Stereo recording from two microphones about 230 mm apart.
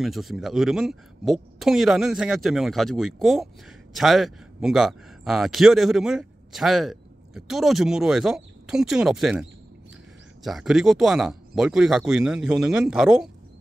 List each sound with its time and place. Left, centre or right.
0.0 s speech: centre